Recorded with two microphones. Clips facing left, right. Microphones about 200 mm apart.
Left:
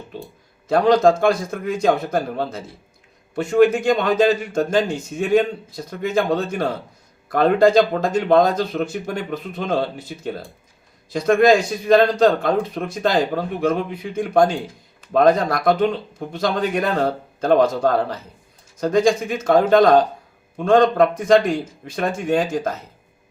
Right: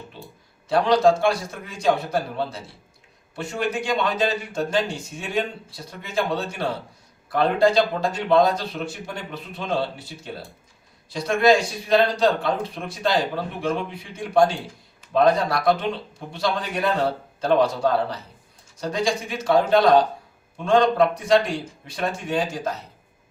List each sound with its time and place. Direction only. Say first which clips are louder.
0.1 s speech: left 8 dB; 45° left (ahead or behind)
11.1 s speech: left 4 dB; 50° left (ahead or behind)